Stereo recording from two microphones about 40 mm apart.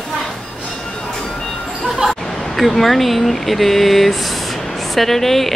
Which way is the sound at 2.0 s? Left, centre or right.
Centre.